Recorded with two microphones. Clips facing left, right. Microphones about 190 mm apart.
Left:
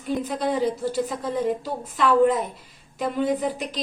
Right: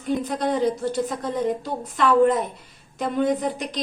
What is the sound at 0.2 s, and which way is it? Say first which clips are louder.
A woman's voice: right 1 dB; 5° left (ahead or behind).